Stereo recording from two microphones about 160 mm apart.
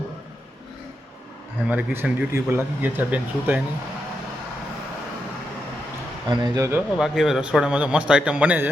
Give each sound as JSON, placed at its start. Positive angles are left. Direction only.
{"t": 1.6, "sound": "speech", "side_deg": -10}
{"t": 6.2, "sound": "speech", "side_deg": -25}
{"t": 7.0, "sound": "speech", "side_deg": 0}